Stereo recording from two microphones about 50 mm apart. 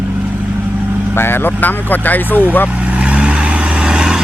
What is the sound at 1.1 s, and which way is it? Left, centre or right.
Speech, left.